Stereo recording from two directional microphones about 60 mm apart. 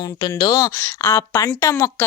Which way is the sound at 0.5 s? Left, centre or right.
Left.